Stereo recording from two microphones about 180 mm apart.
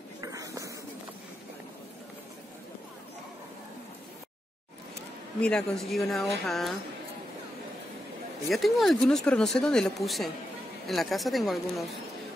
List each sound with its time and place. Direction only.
0.2 s a sound: 20° right (ahead or behind)
5.4 s speech: 5° left (ahead or behind)
8.5 s speech: centre (ahead or behind)